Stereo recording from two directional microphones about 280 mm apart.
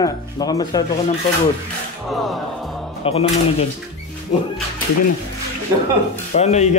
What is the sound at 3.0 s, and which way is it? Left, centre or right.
Speech, left.